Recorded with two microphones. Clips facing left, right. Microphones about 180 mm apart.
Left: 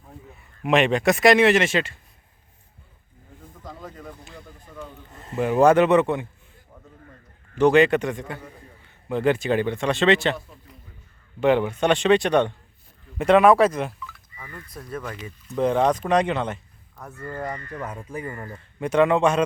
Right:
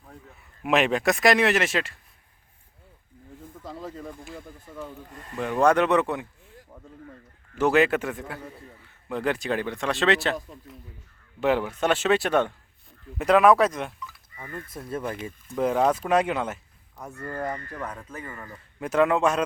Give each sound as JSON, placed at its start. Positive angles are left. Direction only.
{"t": 0.6, "sound": "a man's voice", "side_deg": -5}
{"t": 3.7, "sound": "speech", "side_deg": -30}
{"t": 4.3, "sound": "a man's voice", "side_deg": -5}
{"t": 5.1, "sound": "speech", "side_deg": 25}
{"t": 5.5, "sound": "a man's voice", "side_deg": 5}
{"t": 7.5, "sound": "a man's voice", "side_deg": -5}
{"t": 11.3, "sound": "a man's voice", "side_deg": -5}
{"t": 14.7, "sound": "speech", "side_deg": -25}
{"t": 15.4, "sound": "a man's voice", "side_deg": -5}
{"t": 17.2, "sound": "speech", "side_deg": 5}
{"t": 18.3, "sound": "speech", "side_deg": 30}
{"t": 18.8, "sound": "a man's voice", "side_deg": 0}